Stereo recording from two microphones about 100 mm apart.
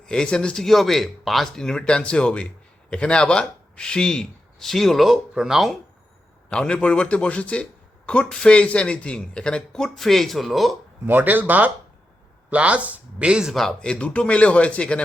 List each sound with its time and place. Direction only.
0.0 s a man's voice: 5° left (ahead or behind)
6.5 s a man's voice: 10° left (ahead or behind)
11.0 s a man's voice: 20° right (ahead or behind); by 15.0 s 10° left (ahead or behind)